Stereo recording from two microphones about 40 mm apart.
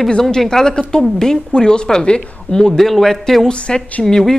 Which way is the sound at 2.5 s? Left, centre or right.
Centre.